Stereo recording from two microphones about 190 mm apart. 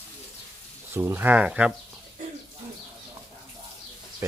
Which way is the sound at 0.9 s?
10° right (ahead or behind).